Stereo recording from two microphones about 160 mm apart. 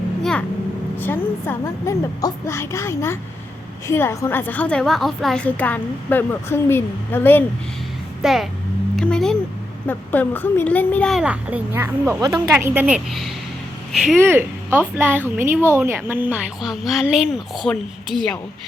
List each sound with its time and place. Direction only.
0.2 s vehicle: 5° left (ahead or behind)
0.9 s a woman's voice: 15° left (ahead or behind)
8.2 s a child's voice: centre (ahead or behind)
11.2 s a woman's voice: 10° right (ahead or behind)
12.5 s a woman's voice: 10° right (ahead or behind)
14.2 s a woman's voice: 15° right (ahead or behind); by 18.3 s 5° left (ahead or behind)